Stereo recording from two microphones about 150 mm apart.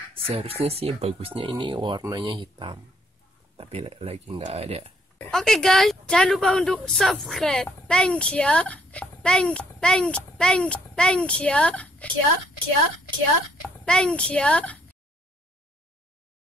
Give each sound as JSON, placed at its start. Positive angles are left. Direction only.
{"t": 0.1, "sound": "speech", "side_deg": -40}
{"t": 5.3, "sound": "speech", "side_deg": 5}
{"t": 13.8, "sound": "a child's voice", "side_deg": 5}